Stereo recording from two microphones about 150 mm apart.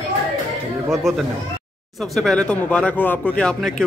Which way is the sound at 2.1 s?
5° left (ahead or behind).